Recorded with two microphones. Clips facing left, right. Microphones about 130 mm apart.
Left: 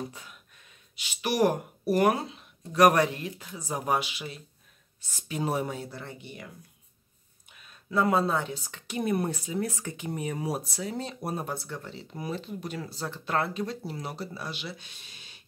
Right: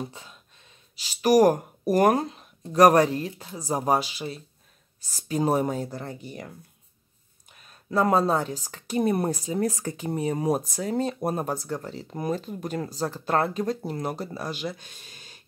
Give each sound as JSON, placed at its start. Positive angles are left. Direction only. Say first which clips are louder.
{"t": 0.1, "sound": "speech", "louder": "right 2 dB", "side_deg": -25}